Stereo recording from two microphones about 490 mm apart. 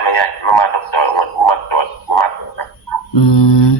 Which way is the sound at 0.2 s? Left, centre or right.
Left.